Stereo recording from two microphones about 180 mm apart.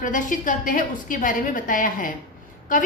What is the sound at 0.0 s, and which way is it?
A woman's voice, 45° left (ahead or behind).